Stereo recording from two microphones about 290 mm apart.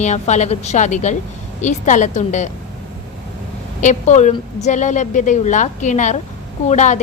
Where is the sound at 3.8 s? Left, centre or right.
Left.